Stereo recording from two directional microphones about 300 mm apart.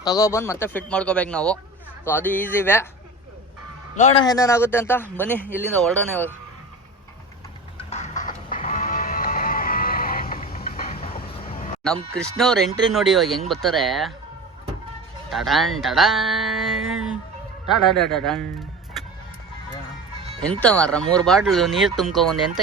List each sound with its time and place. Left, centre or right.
0.0 s speech: centre
3.9 s speech: left; by 6.3 s centre
7.8 s sheep: centre
12.1 s speech: centre
15.3 s speech: centre
20.4 s speech: centre